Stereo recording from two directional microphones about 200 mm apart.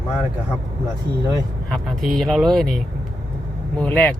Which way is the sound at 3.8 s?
5° left (ahead or behind).